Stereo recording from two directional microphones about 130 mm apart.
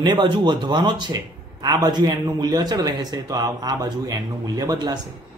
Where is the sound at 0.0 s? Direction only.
35° right (ahead or behind).